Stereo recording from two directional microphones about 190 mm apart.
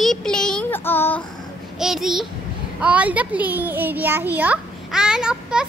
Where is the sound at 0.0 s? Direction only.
Centre (ahead or behind).